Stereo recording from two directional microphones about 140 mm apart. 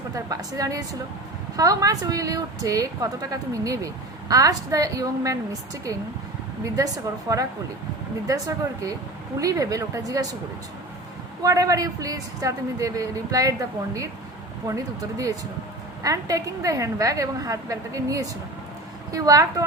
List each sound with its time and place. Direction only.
0.1 s a woman's voice: 25° right (ahead or behind)
11.4 s a woman's voice: 25° right (ahead or behind)